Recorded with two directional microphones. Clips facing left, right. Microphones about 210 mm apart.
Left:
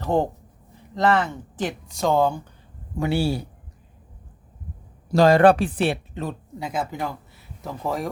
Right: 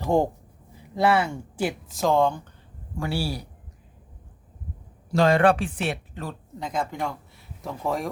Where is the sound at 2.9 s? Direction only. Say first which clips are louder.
Left 6 dB; 20° left (ahead or behind).